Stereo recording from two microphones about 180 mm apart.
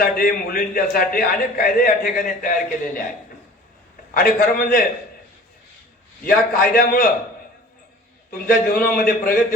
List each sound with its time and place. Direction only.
0.0 s a man's voice: 50° left (ahead or behind)
4.1 s a man's voice: 55° left (ahead or behind)
6.5 s a man's voice: 55° left (ahead or behind)
8.3 s a man's voice: 55° left (ahead or behind)